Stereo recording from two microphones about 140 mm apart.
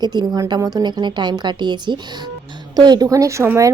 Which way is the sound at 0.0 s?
30° right (ahead or behind).